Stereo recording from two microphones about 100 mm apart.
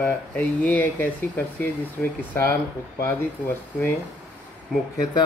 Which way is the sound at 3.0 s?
20° left (ahead or behind).